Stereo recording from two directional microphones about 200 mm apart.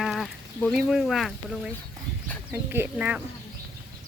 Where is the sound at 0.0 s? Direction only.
Centre (ahead or behind).